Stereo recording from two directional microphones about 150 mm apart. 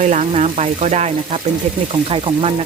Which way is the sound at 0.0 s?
50° right (ahead or behind).